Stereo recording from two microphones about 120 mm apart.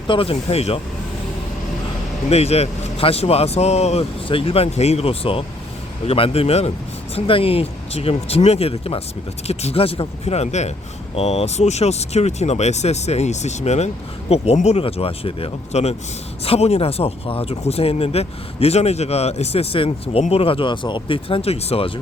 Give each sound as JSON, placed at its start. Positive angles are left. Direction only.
{"t": 0.1, "sound": "speech", "side_deg": 50}
{"t": 2.3, "sound": "speech", "side_deg": 60}
{"t": 4.3, "sound": "speech", "side_deg": 50}